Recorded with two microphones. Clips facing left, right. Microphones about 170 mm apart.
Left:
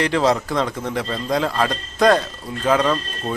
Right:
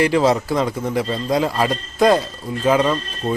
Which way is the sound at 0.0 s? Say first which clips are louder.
Right 2 dB; 5° right (ahead or behind).